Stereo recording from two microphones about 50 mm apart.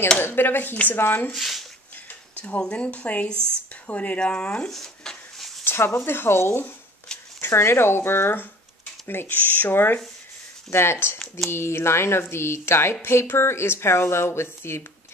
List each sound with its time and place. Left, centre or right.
0.2 s speech: left
1.3 s speech: centre
2.3 s a sound: left
2.6 s speech: left
3.3 s speech: right
3.8 s speech: left
4.2 s a sound: centre
5.6 s a sound: left
6.0 s speech: left
10.7 s speech: left
11.1 s speech: centre
11.5 s speech: left